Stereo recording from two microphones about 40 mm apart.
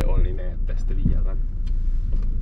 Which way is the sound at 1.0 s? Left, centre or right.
Right.